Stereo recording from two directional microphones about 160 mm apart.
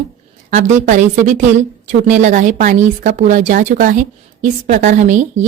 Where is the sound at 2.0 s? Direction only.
55° right (ahead or behind).